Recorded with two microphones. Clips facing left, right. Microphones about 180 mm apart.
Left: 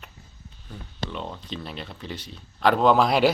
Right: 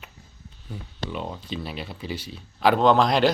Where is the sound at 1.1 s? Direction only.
5° right (ahead or behind).